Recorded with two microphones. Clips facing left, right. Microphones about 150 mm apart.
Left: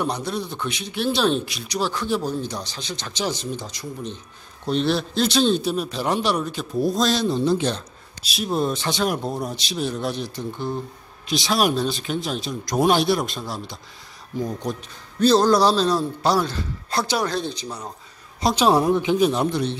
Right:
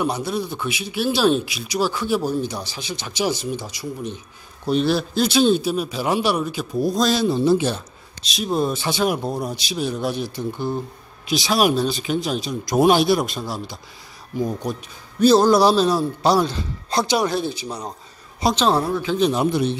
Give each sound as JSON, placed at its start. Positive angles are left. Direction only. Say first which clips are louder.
{"t": 0.0, "sound": "speech", "louder": "right 2 dB", "side_deg": -5}
{"t": 8.2, "sound": "speech", "louder": "right 2 dB", "side_deg": 5}
{"t": 18.5, "sound": "a woman's voice", "louder": "left 2 dB", "side_deg": 10}
{"t": 19.3, "sound": "speech", "louder": "right 3 dB", "side_deg": -10}